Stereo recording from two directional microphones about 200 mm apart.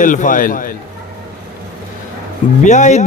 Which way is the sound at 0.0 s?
40° left (ahead or behind).